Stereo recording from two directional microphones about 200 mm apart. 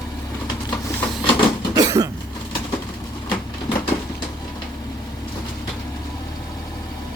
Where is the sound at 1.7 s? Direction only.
20° right (ahead or behind).